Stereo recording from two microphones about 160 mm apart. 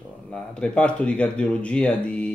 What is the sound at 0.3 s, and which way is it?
Speech, 5° left (ahead or behind).